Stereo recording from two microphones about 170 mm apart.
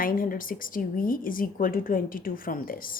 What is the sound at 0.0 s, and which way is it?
Speech, 55° left (ahead or behind).